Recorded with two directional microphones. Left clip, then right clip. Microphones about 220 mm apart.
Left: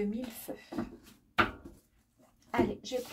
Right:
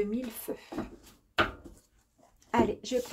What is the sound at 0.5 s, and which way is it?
Speech, 35° right (ahead or behind).